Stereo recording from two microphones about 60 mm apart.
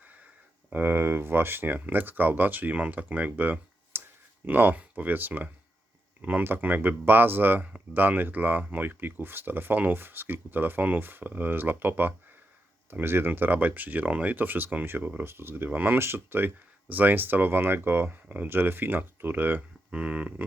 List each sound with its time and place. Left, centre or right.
0.7 s speech: right
3.9 s clicking: right
4.4 s speech: right
19.9 s speech: centre